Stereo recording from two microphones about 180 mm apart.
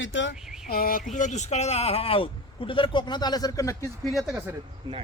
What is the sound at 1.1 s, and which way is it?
Speech, 40° left (ahead or behind).